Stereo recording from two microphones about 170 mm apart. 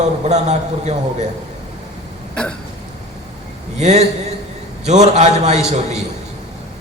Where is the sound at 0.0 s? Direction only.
45° right (ahead or behind).